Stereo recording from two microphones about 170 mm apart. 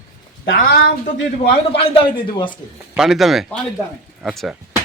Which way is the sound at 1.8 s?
30° left (ahead or behind).